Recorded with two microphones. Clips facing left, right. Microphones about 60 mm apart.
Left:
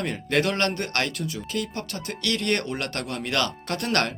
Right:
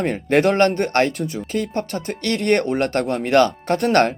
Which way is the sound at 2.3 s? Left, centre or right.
Right.